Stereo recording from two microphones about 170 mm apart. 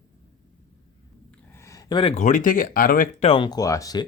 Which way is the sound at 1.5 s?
15° left (ahead or behind).